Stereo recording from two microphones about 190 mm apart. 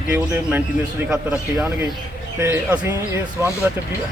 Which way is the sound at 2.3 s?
10° right (ahead or behind).